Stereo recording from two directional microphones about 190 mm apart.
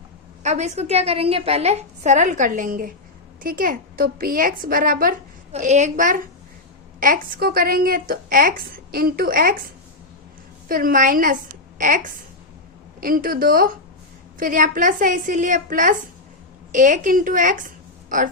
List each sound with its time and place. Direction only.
0.4 s a woman's voice: 35° right (ahead or behind)
5.5 s a woman's voice: 40° right (ahead or behind)
10.7 s a woman's voice: 50° right (ahead or behind)